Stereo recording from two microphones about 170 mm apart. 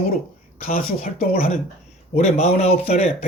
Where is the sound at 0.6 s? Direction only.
55° left (ahead or behind).